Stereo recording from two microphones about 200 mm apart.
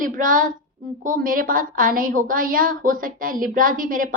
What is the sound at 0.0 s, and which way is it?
A woman's voice, 40° right (ahead or behind).